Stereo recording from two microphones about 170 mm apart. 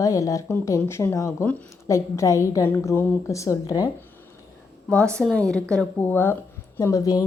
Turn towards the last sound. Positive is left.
turn(degrees=20)  # may be behind; listen again after turning